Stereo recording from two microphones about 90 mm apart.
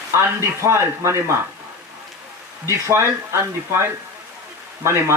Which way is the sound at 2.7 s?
30° right (ahead or behind).